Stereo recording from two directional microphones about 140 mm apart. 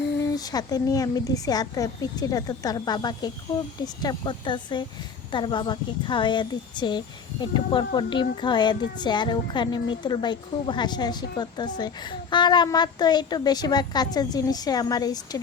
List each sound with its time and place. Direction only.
0.3 s a woman's voice: 25° left (ahead or behind)